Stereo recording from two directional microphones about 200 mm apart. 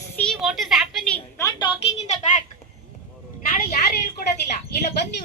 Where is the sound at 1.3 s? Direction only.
15° left (ahead or behind).